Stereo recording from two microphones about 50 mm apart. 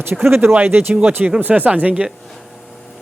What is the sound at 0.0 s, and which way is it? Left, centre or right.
Speech, right.